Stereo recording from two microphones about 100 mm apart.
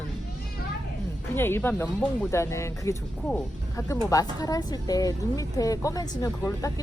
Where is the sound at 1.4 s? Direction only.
25° left (ahead or behind).